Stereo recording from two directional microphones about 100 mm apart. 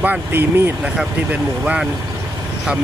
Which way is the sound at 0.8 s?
10° right (ahead or behind).